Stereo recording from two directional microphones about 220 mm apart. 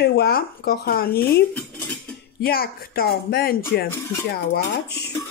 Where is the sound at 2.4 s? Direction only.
45° left (ahead or behind).